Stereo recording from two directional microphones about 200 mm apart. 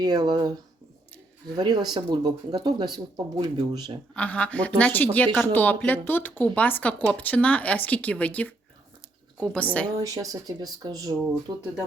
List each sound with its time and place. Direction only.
0.0 s speech: 20° right (ahead or behind)
1.5 s speech: 20° right (ahead or behind)
4.1 s speech: 5° left (ahead or behind)
10.0 s speech: 20° right (ahead or behind)